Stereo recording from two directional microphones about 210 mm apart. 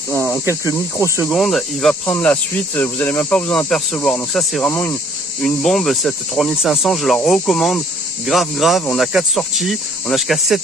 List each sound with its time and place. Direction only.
0.1 s speech: centre (ahead or behind)
1.3 s speech: centre (ahead or behind)